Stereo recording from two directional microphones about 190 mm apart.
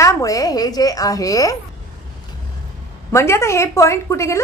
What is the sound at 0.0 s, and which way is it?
A woman's voice, 15° left (ahead or behind).